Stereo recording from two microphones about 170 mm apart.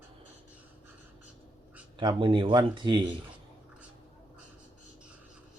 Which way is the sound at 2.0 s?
30° right (ahead or behind).